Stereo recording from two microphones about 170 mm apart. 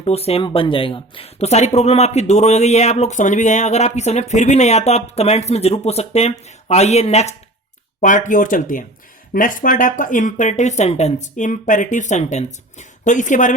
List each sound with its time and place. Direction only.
0.0 s speech: 35° left (ahead or behind)